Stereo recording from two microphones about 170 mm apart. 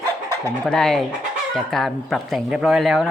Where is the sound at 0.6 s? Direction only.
5° left (ahead or behind).